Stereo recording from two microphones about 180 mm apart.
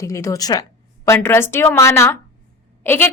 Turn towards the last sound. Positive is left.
turn(degrees=10)  # may be behind; listen again after turning